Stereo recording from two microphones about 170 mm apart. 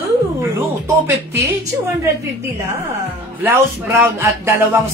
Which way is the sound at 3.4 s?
10° right (ahead or behind).